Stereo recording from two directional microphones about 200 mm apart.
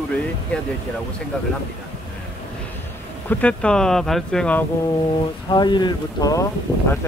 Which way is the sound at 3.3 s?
5° left (ahead or behind).